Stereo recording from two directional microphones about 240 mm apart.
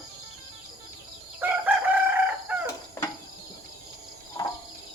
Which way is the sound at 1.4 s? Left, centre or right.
Centre.